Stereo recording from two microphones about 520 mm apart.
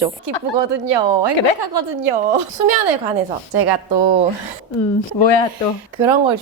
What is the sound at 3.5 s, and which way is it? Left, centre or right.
Speech, right.